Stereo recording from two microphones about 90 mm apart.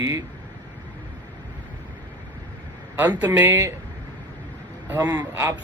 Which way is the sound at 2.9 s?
20° right (ahead or behind).